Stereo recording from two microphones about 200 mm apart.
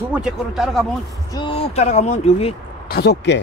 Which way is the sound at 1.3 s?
25° left (ahead or behind).